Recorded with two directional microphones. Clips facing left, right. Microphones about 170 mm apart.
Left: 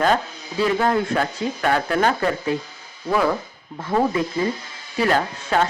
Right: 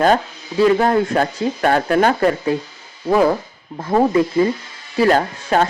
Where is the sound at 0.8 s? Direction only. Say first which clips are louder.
Right 4 dB; 40° right (ahead or behind).